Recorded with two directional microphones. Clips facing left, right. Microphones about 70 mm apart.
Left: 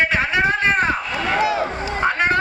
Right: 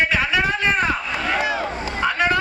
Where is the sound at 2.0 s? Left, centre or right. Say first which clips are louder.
Left 1 dB; left.